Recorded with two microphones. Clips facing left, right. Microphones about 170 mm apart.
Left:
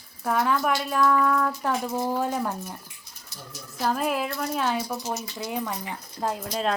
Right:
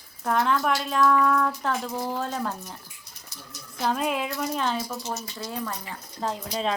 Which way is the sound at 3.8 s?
5° left (ahead or behind).